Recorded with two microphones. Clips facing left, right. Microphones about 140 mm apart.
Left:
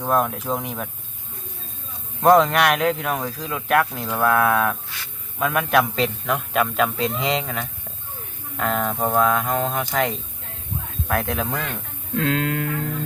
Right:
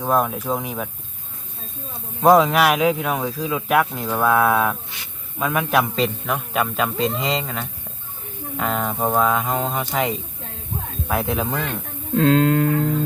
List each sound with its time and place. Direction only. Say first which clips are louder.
0.0 s speech: right 1 dB; centre (ahead or behind)
2.2 s speech: right 1 dB; 5° right (ahead or behind)
12.1 s a sound: right 7 dB; 35° right (ahead or behind)